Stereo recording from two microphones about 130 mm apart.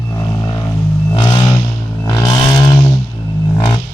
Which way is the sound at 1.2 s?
35° left (ahead or behind).